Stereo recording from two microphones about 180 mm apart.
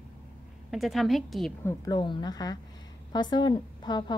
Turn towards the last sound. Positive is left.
turn(degrees=25)  # may be behind; listen again after turning